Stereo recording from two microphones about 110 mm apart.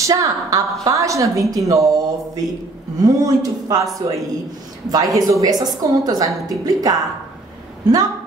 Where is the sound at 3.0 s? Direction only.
30° right (ahead or behind).